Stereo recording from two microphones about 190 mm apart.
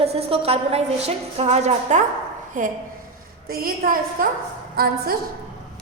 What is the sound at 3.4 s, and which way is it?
A woman's voice, 50° right (ahead or behind).